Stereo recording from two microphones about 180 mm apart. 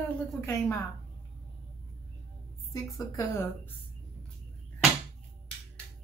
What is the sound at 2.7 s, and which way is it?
A woman's voice, 15° left (ahead or behind).